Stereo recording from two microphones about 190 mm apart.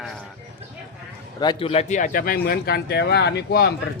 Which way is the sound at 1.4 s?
25° left (ahead or behind).